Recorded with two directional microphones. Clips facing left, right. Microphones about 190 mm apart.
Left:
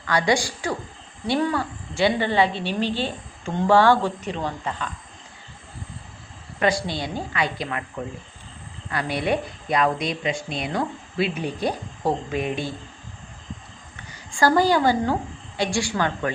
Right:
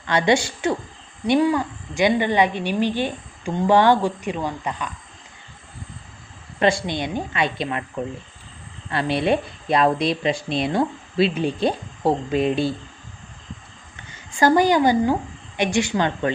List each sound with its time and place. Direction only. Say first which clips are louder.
0.0 s a woman's voice: right 3 dB; 25° right (ahead or behind)
6.6 s speech: right 3 dB; 25° right (ahead or behind)
8.9 s speech: right 4 dB; 25° right (ahead or behind)
14.1 s a woman's voice: right 2 dB; 20° right (ahead or behind)